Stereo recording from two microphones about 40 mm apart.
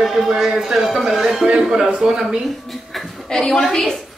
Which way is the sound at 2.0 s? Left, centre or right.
Right.